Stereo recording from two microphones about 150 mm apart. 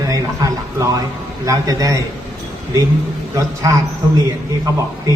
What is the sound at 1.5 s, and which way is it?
Speech, 20° right (ahead or behind).